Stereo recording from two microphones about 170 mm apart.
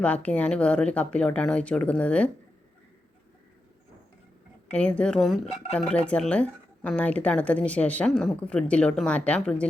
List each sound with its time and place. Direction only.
0.0 s speech: 5° left (ahead or behind)
4.7 s speech: 5° left (ahead or behind)